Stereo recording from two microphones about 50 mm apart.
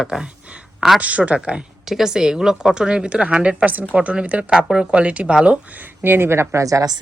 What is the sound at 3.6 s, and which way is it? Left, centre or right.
Speech, right.